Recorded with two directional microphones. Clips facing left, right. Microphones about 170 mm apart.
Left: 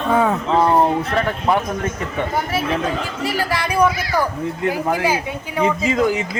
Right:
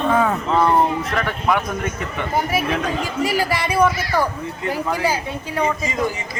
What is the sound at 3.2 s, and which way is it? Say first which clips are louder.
Speech: right 2 dB; 10° right (ahead or behind).